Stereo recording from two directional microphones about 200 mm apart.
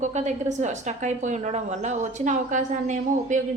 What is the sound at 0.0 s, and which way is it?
A woman's voice, 35° right (ahead or behind).